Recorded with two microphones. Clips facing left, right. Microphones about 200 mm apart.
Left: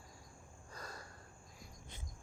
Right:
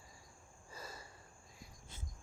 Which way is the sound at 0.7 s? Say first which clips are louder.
Even; 5° right (ahead or behind).